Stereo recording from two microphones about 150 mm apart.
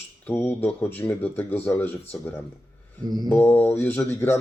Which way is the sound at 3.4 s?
15° left (ahead or behind).